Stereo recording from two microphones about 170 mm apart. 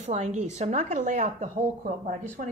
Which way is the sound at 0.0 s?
45° right (ahead or behind).